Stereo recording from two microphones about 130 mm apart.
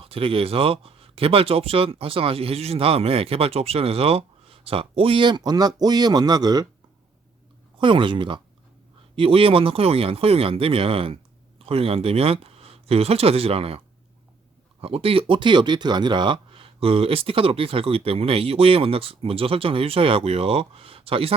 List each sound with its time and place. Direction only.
0.0 s speech: 45° right (ahead or behind)
7.8 s speech: 40° right (ahead or behind)